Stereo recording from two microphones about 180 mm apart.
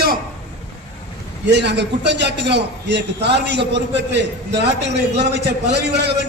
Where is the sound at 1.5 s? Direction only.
70° right (ahead or behind).